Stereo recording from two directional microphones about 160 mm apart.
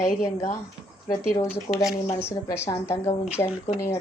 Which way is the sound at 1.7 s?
35° left (ahead or behind).